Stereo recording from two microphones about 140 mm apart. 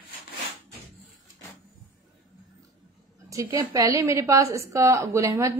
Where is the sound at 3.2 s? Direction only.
25° right (ahead or behind).